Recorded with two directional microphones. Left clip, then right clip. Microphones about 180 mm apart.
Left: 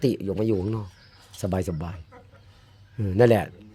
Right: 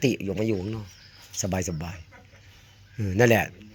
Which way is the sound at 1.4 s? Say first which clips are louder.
Left 1 dB; 20° left (ahead or behind).